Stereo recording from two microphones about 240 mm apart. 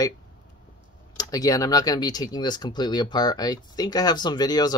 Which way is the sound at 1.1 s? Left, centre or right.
Centre.